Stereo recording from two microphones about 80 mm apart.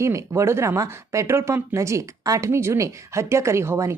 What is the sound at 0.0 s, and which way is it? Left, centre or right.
Speech, right.